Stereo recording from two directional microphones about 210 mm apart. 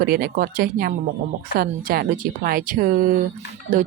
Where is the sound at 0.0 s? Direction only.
45° right (ahead or behind).